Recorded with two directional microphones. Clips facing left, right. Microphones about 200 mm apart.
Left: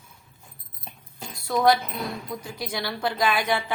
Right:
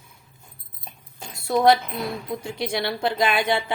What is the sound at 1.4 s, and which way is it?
A woman's voice, 25° right (ahead or behind).